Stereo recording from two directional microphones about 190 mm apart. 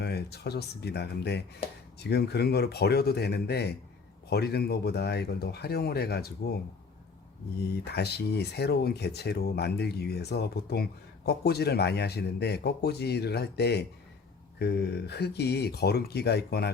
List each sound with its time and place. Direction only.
0.0 s speech: 60° left (ahead or behind)
7.9 s speech: 60° left (ahead or behind)